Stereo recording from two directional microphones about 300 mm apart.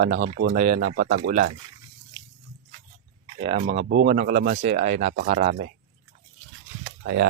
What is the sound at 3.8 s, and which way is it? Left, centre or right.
Speech, right.